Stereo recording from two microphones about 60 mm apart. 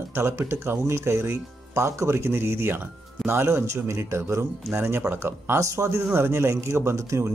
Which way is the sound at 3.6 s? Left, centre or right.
Right.